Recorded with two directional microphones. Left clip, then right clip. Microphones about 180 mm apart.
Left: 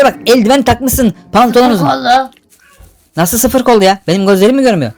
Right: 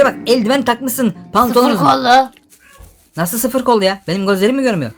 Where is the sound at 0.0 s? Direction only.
35° left (ahead or behind).